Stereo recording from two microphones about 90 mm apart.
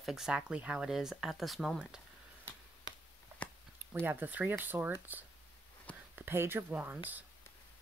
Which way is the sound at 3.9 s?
20° right (ahead or behind).